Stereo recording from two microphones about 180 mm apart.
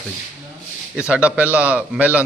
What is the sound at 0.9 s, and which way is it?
A man's voice, 5° right (ahead or behind).